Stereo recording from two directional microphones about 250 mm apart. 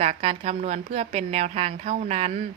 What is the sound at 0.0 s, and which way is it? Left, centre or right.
A woman's voice, right.